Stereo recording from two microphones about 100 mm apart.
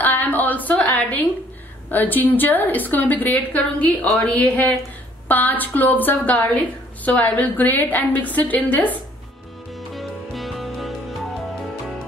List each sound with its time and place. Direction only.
0.0 s a sound: 20° left (ahead or behind)
1.9 s a woman's voice: 20° left (ahead or behind)
9.8 s music: centre (ahead or behind)